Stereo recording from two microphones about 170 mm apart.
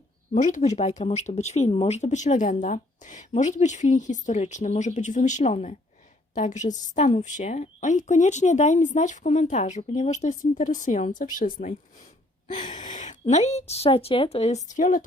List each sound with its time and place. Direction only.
0.3 s speech: 45° left (ahead or behind)
12.9 s speech: 45° left (ahead or behind)